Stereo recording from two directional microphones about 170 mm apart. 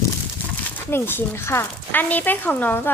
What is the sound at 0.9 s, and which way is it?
Speech, 15° left (ahead or behind).